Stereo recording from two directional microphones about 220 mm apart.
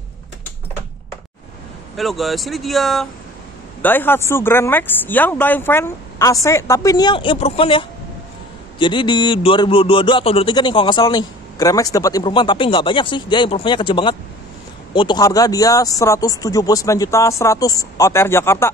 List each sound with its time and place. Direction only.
2.0 s a man's voice: centre (ahead or behind)